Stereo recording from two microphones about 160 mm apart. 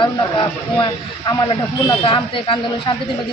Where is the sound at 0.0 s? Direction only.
30° left (ahead or behind).